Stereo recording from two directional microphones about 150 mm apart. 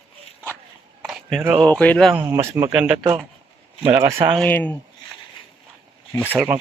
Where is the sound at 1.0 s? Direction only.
5° right (ahead or behind).